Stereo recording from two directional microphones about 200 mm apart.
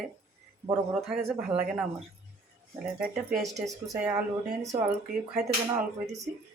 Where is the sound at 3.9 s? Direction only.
15° right (ahead or behind).